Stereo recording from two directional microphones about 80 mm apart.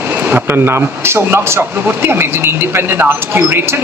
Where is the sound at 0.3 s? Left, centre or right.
Right.